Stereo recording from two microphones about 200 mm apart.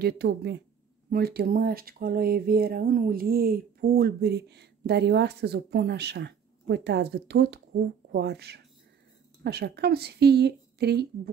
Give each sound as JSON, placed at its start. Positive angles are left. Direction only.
{"t": 0.0, "sound": "a woman's voice", "side_deg": -55}